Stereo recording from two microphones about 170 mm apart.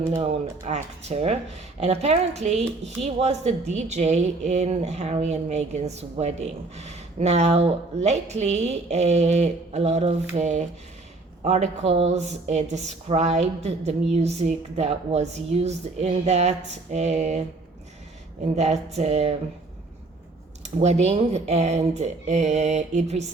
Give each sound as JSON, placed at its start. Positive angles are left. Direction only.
{"t": 0.3, "sound": "speech", "side_deg": -40}
{"t": 18.4, "sound": "speech", "side_deg": -40}
{"t": 20.7, "sound": "speech", "side_deg": -40}